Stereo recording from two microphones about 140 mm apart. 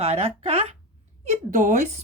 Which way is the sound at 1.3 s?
65° right (ahead or behind).